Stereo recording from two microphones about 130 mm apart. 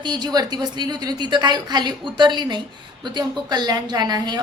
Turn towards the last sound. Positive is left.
turn(degrees=-30)  # may be behind; listen again after turning